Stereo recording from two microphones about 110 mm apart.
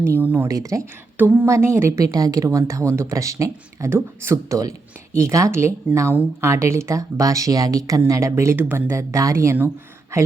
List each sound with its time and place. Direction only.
0.0 s speech: 20° right (ahead or behind)
0.4 s speech: 30° right (ahead or behind)
1.1 s a sound: 15° right (ahead or behind)
1.5 s speech: 25° right (ahead or behind)